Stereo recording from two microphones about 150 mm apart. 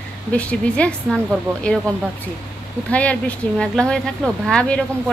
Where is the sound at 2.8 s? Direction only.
10° left (ahead or behind).